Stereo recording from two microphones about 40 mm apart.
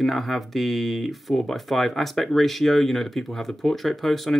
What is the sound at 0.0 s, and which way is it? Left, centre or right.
Speech, centre.